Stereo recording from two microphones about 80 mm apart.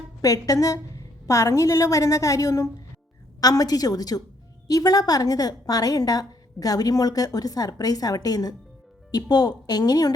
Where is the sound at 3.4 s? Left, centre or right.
Left.